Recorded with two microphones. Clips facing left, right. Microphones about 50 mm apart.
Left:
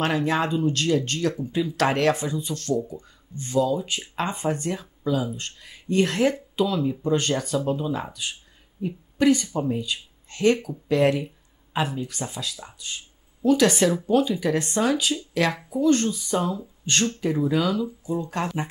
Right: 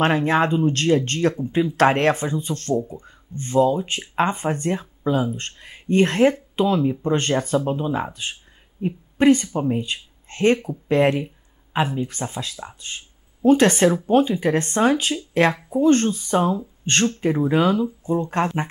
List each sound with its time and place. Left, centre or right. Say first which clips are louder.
0.0 s speech: right 5 dB; right